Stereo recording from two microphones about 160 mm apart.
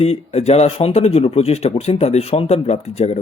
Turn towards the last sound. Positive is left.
turn(degrees=40)  # may be behind; listen again after turning